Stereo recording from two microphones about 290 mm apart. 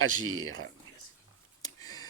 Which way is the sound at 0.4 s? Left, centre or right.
Right.